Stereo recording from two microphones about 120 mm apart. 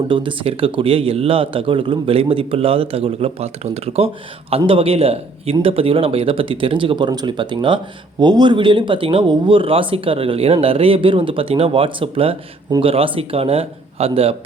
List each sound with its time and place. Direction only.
0.1 s speech: 45° right (ahead or behind)